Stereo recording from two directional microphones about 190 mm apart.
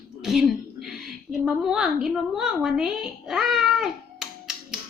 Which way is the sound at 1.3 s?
Centre (ahead or behind).